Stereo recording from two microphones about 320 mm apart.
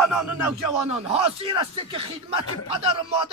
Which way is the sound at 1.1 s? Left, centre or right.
Centre.